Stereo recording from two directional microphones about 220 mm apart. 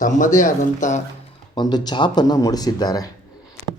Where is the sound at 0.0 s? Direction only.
35° left (ahead or behind).